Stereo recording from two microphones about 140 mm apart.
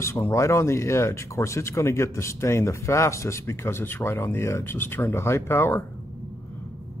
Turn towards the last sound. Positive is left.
turn(degrees=15)  # may be behind; listen again after turning